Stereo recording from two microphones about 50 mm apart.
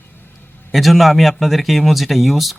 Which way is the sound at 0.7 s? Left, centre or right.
Centre.